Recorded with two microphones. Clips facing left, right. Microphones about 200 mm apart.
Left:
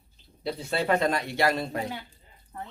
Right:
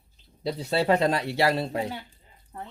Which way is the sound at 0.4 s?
35° right (ahead or behind).